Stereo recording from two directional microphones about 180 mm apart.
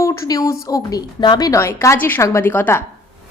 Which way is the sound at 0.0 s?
15° left (ahead or behind).